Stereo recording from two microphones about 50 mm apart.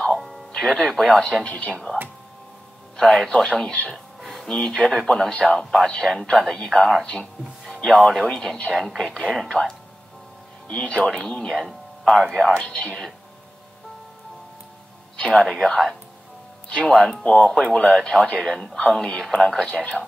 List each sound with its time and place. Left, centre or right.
0.1 s music: centre
0.5 s speech: centre
1.4 s speech: left
1.7 s speech: centre
3.0 s speech: centre
7.6 s music: centre
8.3 s speech: centre
10.7 s speech: centre
11.4 s speech: centre
12.5 s speech: centre
15.1 s music: centre
15.4 s speech: centre
19.7 s speech: left